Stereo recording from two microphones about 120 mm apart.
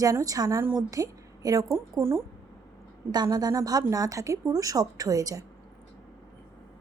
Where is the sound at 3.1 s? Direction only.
35° right (ahead or behind).